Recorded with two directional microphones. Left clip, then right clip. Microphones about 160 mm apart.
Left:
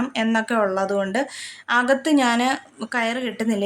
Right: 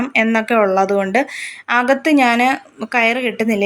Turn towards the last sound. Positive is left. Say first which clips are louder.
# right 7 dB
turn(degrees=-15)  # may be behind; listen again after turning